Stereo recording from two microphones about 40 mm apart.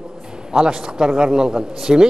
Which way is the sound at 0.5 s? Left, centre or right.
Centre.